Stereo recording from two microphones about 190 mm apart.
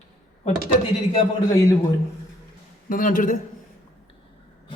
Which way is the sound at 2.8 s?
45° left (ahead or behind).